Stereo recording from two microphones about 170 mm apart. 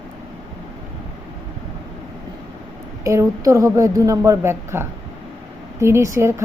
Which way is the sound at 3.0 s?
15° right (ahead or behind).